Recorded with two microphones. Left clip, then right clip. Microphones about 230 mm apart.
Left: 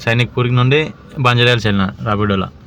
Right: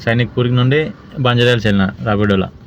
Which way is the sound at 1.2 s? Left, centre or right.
Left.